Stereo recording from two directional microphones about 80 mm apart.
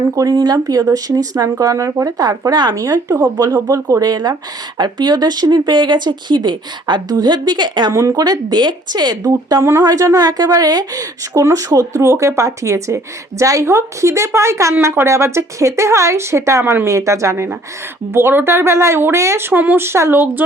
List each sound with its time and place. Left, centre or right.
0.2 s speech: right
2.7 s speech: right
7.9 s speech: right
9.6 s a woman's voice: right